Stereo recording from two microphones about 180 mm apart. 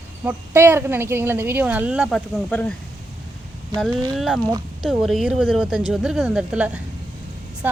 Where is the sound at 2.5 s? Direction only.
10° left (ahead or behind).